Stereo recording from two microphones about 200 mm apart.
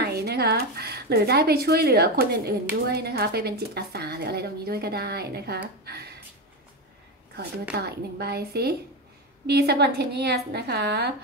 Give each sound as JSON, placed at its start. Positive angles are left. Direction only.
{"t": 0.0, "sound": "speech", "side_deg": -50}
{"t": 7.7, "sound": "a woman's voice", "side_deg": -55}